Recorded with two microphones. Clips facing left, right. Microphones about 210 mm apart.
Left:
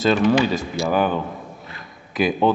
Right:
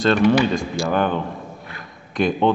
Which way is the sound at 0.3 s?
5° left (ahead or behind).